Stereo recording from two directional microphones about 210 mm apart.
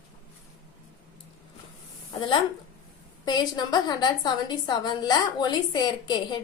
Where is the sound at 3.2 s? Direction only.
20° left (ahead or behind).